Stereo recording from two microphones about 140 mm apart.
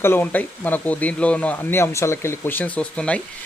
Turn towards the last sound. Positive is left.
turn(degrees=5)  # may be behind; listen again after turning